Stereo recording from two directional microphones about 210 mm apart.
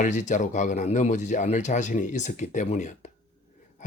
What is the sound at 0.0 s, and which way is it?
Speech, 35° left (ahead or behind).